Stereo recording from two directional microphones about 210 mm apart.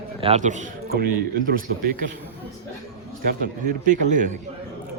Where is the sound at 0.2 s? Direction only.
30° right (ahead or behind).